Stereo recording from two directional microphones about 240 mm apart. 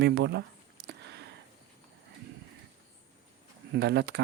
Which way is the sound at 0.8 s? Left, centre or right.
Right.